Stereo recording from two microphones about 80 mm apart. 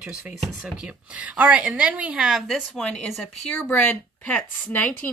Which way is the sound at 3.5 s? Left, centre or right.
Centre.